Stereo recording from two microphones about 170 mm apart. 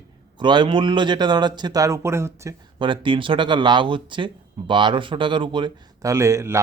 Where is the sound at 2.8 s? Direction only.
30° right (ahead or behind).